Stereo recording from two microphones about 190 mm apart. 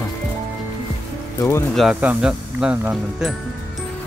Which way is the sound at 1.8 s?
5° right (ahead or behind).